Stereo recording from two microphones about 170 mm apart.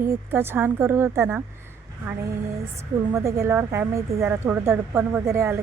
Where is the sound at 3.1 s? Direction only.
15° right (ahead or behind).